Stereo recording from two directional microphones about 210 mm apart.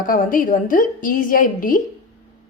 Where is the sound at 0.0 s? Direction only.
40° left (ahead or behind).